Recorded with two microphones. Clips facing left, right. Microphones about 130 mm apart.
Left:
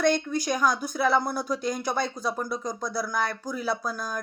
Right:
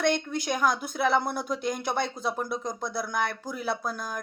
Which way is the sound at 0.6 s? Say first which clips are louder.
Even; 60° right (ahead or behind).